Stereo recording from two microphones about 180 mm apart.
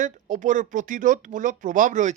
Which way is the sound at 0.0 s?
45° right (ahead or behind).